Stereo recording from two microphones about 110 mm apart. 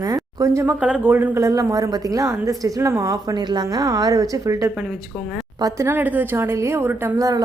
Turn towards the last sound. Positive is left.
turn(degrees=-30)  # may be behind; listen again after turning